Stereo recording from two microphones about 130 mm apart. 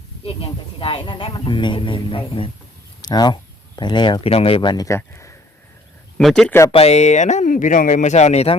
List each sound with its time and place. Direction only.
0.3 s speech: 45° left (ahead or behind)
4.9 s speech: 20° left (ahead or behind)
6.1 s speech: 5° left (ahead or behind)
6.7 s speech: 50° left (ahead or behind)